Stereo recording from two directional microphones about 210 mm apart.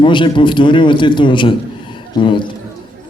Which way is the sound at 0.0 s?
25° left (ahead or behind).